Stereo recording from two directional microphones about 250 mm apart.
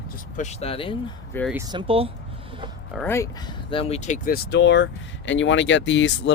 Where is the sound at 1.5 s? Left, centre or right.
Centre.